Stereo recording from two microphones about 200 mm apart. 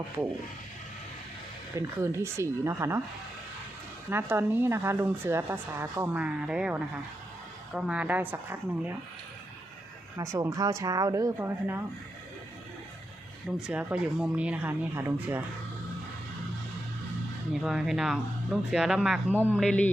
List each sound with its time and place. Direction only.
1.7 s speech: 15° right (ahead or behind)
4.1 s speech: 10° right (ahead or behind)
10.2 s speech: 15° right (ahead or behind)
13.7 s speech: 5° right (ahead or behind)
17.5 s speech: centre (ahead or behind)